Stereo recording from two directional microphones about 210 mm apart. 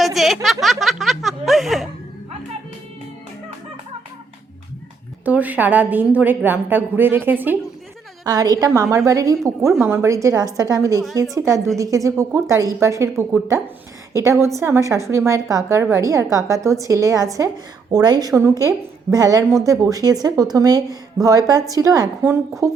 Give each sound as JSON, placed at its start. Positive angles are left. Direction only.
{"t": 0.0, "sound": "a sound", "side_deg": 0}
{"t": 0.6, "sound": "snicker", "side_deg": 0}
{"t": 5.2, "sound": "a woman's voice", "side_deg": -5}